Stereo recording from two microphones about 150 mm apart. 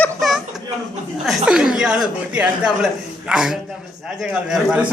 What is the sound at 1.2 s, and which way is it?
A man's voice, 5° right (ahead or behind).